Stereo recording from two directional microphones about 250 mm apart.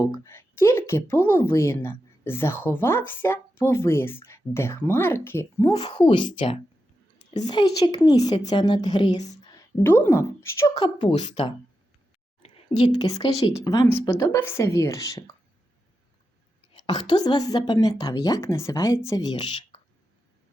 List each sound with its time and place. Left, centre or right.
0.0 s a woman's voice: centre
16.8 s a woman's voice: centre